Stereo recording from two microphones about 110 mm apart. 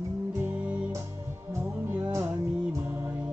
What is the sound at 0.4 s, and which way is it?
Music, 15° right (ahead or behind).